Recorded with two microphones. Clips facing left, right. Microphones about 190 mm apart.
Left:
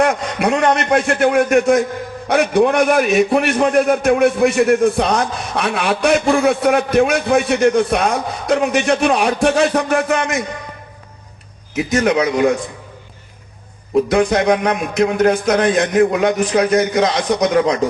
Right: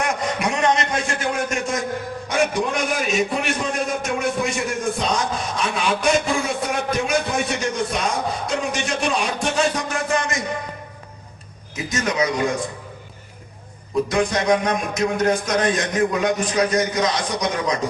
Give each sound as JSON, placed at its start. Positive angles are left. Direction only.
{"t": 0.0, "sound": "a man's voice", "side_deg": 65}
{"t": 11.7, "sound": "a man's voice", "side_deg": 65}
{"t": 13.9, "sound": "a man's voice", "side_deg": 65}